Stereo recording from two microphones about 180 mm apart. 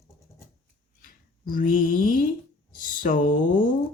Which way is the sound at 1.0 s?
50° left (ahead or behind).